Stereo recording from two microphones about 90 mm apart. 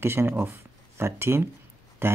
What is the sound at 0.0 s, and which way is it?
Speech, 25° right (ahead or behind).